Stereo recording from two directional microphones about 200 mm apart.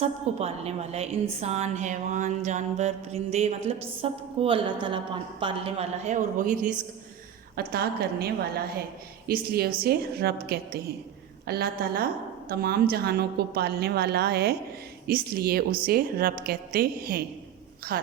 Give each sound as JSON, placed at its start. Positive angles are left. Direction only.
{"t": 0.0, "sound": "a woman's voice", "side_deg": -30}